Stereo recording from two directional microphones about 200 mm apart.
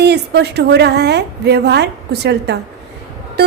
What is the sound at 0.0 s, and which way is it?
A woman's voice, 55° right (ahead or behind).